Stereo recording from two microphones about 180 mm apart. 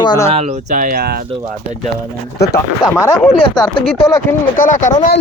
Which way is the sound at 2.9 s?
15° left (ahead or behind).